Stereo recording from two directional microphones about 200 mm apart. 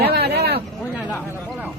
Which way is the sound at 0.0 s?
55° right (ahead or behind).